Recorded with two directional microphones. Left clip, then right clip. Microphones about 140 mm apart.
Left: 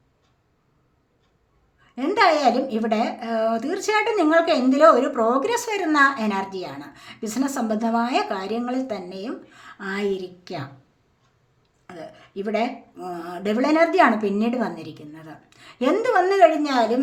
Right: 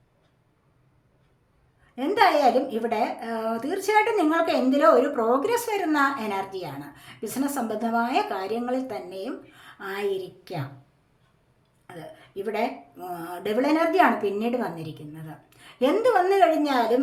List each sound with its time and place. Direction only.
2.0 s a woman's voice: 30° left (ahead or behind)
11.9 s speech: 30° left (ahead or behind)